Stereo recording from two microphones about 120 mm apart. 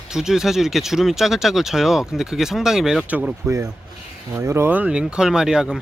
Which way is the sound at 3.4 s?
30° right (ahead or behind).